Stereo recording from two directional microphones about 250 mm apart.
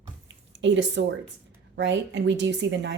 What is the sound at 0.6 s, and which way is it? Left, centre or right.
Speech, right.